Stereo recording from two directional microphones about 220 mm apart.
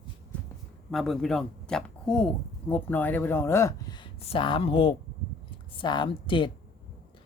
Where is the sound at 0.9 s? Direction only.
Centre (ahead or behind).